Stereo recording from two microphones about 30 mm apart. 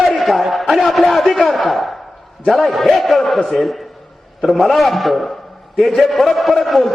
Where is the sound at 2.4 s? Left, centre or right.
Centre.